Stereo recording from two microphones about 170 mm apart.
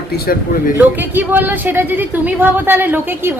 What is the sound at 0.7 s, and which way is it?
A woman's voice, 10° right (ahead or behind).